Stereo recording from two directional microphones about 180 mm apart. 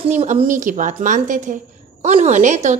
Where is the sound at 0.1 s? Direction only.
35° right (ahead or behind).